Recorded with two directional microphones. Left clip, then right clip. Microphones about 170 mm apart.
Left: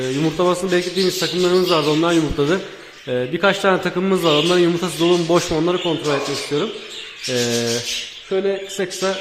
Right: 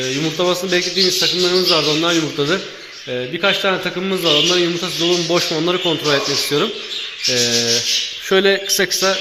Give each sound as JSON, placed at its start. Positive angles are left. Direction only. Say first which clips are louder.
{"t": 0.0, "sound": "a man's voice", "louder": "even", "side_deg": 15}
{"t": 3.5, "sound": "a man's voice", "louder": "even", "side_deg": 35}
{"t": 5.5, "sound": "a man's voice", "louder": "right 1 dB", "side_deg": 10}
{"t": 5.8, "sound": "speech", "louder": "right 3 dB", "side_deg": 0}
{"t": 7.3, "sound": "a man's voice", "louder": "right 2 dB", "side_deg": 15}
{"t": 8.3, "sound": "a man's voice", "louder": "right 6 dB", "side_deg": -15}
{"t": 8.8, "sound": "speech", "louder": "right 5 dB", "side_deg": 0}